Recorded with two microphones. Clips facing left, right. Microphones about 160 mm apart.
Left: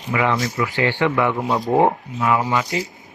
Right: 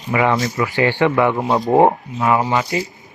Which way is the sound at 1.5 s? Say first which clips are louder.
Right 4 dB; 25° right (ahead or behind).